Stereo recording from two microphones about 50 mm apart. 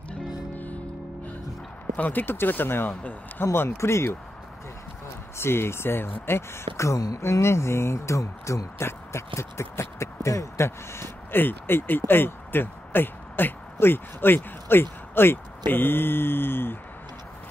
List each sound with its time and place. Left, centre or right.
2.0 s speech: left
2.9 s speech: left
3.5 s speech: left
5.4 s speech: left
11.3 s speech: left